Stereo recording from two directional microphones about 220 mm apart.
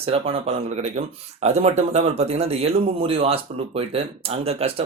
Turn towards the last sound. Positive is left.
turn(degrees=-25)  # may be behind; listen again after turning